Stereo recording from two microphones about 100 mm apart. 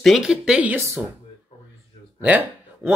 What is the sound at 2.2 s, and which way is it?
Speech, 15° right (ahead or behind).